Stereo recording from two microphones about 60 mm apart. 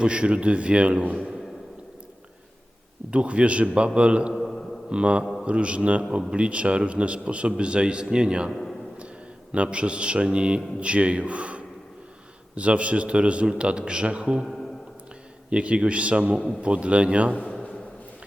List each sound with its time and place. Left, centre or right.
0.0 s a man's voice: centre
3.1 s a man's voice: centre
4.4 s mantra: centre
4.9 s a man's voice: centre
8.4 s a man's voice: centre
9.5 s a man's voice: centre
14.4 s speech: centre
15.4 s a man's voice: centre